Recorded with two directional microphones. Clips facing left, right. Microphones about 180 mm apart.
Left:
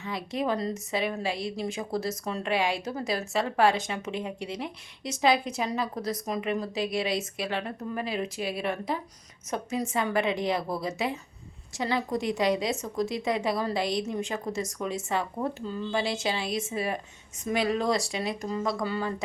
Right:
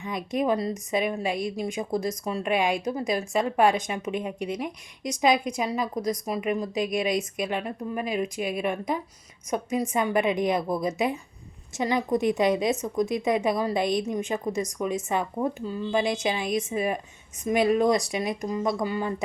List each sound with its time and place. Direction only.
0.0 s a woman's voice: 20° right (ahead or behind)